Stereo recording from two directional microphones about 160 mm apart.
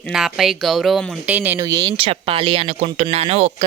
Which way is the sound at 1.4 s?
15° right (ahead or behind).